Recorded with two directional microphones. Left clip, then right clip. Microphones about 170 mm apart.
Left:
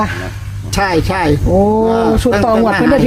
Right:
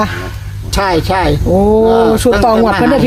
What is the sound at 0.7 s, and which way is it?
Speech, centre (ahead or behind).